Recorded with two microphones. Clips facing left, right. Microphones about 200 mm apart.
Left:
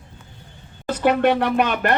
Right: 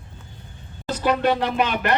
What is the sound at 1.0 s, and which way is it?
Speech, 60° left (ahead or behind).